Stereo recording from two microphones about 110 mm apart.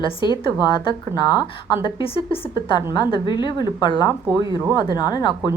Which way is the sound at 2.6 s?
40° left (ahead or behind).